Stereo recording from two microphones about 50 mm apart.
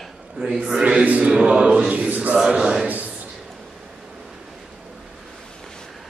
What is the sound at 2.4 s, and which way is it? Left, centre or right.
Speech, centre.